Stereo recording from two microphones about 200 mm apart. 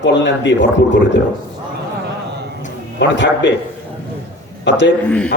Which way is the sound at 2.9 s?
65° left (ahead or behind).